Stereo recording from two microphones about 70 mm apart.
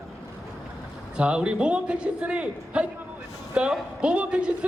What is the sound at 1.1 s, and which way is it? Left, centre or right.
A man's voice, centre.